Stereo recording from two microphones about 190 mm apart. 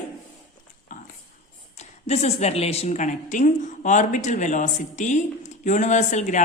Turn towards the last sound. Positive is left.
turn(degrees=40)  # may be behind; listen again after turning